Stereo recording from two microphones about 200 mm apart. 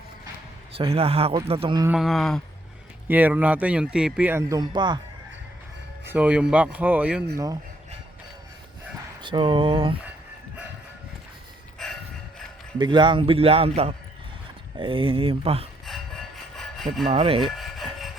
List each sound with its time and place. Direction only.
0.8 s a man's voice: 30° right (ahead or behind)
1.9 s speech: centre (ahead or behind); by 4.9 s 20° right (ahead or behind)
6.1 s speech: 5° right (ahead or behind)
7.3 s speech: 15° right (ahead or behind)
9.2 s a man's voice: 25° right (ahead or behind)
12.8 s a man's voice: 25° right (ahead or behind)
15.9 s rub: centre (ahead or behind)
17.1 s a man's voice: 30° right (ahead or behind)
17.6 s rub: centre (ahead or behind)